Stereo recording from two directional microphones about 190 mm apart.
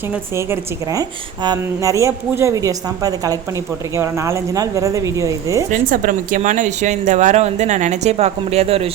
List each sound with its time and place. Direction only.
0.1 s a woman's voice: 15° right (ahead or behind)
5.7 s speech: 45° right (ahead or behind)